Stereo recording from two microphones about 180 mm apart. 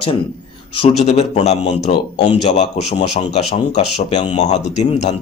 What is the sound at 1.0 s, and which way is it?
A man's voice, 40° left (ahead or behind).